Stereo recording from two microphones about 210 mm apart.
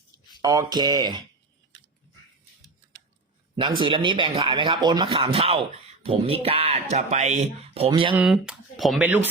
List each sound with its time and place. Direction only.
0.4 s speech: 15° right (ahead or behind)
3.8 s speech: 25° right (ahead or behind)
8.1 s speech: 5° right (ahead or behind)